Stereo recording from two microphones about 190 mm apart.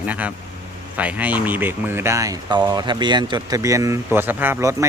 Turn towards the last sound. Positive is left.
turn(degrees=-15)  # may be behind; listen again after turning